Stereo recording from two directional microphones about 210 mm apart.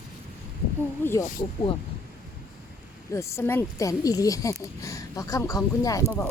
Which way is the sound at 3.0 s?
15° left (ahead or behind).